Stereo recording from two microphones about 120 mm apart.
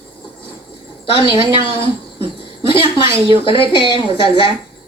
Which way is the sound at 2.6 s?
50° left (ahead or behind).